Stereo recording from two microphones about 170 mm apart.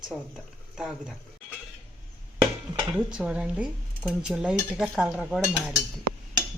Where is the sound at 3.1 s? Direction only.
5° right (ahead or behind).